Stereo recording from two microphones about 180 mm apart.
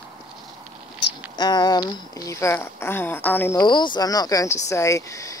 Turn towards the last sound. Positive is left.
turn(degrees=15)  # may be behind; listen again after turning